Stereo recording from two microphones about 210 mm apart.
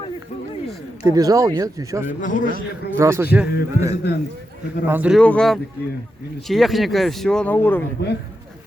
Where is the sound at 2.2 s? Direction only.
40° left (ahead or behind).